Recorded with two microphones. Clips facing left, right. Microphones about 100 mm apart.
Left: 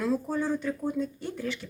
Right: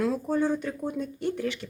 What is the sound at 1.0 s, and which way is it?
Speech, 65° right (ahead or behind).